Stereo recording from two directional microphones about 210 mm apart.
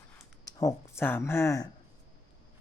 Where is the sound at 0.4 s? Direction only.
15° left (ahead or behind).